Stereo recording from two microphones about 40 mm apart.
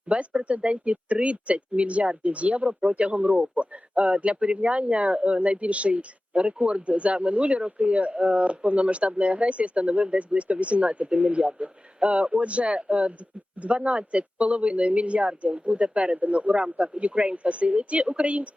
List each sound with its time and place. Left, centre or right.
0.1 s speech: right